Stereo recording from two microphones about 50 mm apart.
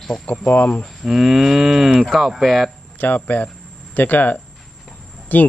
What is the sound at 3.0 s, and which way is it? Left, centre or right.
Speech, left.